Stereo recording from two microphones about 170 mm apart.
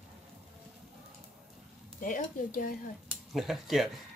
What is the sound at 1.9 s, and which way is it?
Speech, 50° left (ahead or behind).